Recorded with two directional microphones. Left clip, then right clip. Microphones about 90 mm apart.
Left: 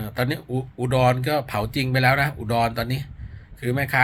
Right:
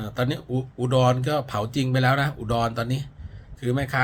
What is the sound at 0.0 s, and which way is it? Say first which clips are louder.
A man's voice: left 1 dB; 30° right (ahead or behind).